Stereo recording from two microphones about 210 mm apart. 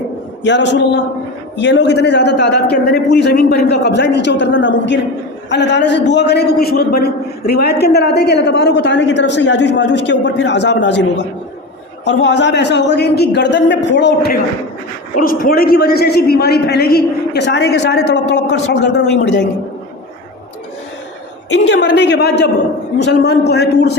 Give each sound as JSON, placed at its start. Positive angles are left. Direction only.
{"t": 0.4, "sound": "a man's voice", "side_deg": 60}
{"t": 21.5, "sound": "a man's voice", "side_deg": 55}